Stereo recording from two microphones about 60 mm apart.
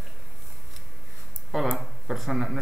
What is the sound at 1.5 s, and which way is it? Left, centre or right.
A man's voice, centre.